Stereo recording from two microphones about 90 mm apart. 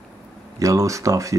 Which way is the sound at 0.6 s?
40° right (ahead or behind).